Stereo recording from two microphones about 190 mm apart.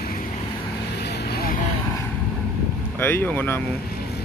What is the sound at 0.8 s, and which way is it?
Vehicle, 60° left (ahead or behind).